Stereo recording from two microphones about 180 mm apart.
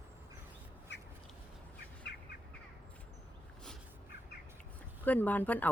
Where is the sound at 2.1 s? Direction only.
65° left (ahead or behind).